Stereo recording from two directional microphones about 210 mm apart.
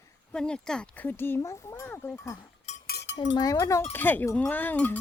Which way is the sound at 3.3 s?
15° left (ahead or behind).